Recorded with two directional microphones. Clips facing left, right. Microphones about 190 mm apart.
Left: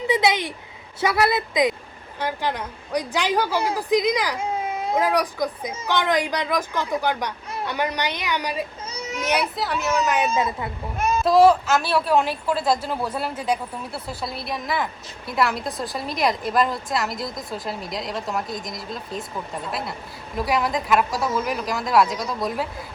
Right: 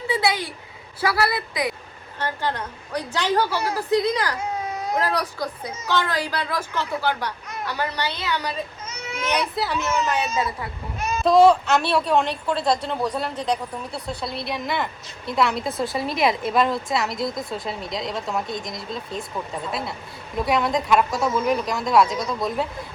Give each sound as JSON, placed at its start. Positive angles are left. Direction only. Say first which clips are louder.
{"t": 0.1, "sound": "a sound", "louder": "left 2 dB", "side_deg": 20}
{"t": 1.0, "sound": "a woman's voice", "louder": "left 2 dB", "side_deg": 20}
{"t": 4.4, "sound": "baby cry", "louder": "left 2 dB", "side_deg": 25}
{"t": 4.9, "sound": "a woman's voice", "louder": "left 4 dB", "side_deg": 15}
{"t": 8.9, "sound": "baby cry", "louder": "left 2 dB", "side_deg": 40}
{"t": 9.6, "sound": "a woman's voice", "louder": "right 1 dB", "side_deg": 0}
{"t": 10.3, "sound": "a woman's voice", "louder": "left 2 dB", "side_deg": 20}
{"t": 11.2, "sound": "a woman's voice", "louder": "right 1 dB", "side_deg": 0}